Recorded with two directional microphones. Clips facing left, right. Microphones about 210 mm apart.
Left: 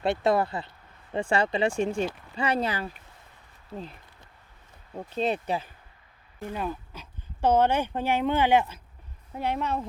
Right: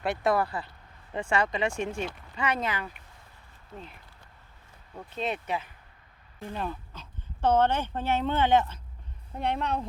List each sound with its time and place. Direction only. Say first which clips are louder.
0.0 s speech: left 2 dB; 25° left (ahead or behind)
4.9 s speech: left 5 dB; 35° left (ahead or behind)
6.4 s a woman's voice: left 2 dB; 10° left (ahead or behind)